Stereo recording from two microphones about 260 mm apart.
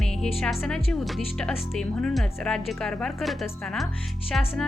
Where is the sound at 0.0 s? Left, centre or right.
Centre.